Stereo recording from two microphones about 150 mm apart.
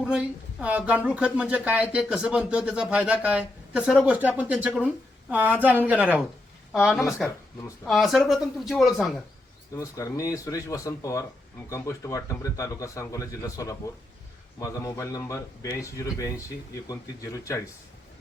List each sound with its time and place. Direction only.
0.0 s speech: 5° right (ahead or behind)
7.2 s speech: 5° left (ahead or behind)
9.7 s speech: 20° left (ahead or behind)